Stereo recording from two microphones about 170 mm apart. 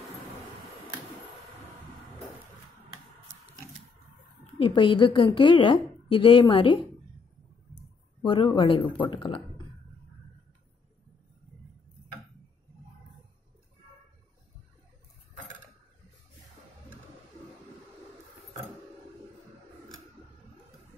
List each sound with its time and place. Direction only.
4.6 s a woman's voice: 30° left (ahead or behind)
8.2 s a woman's voice: 30° left (ahead or behind)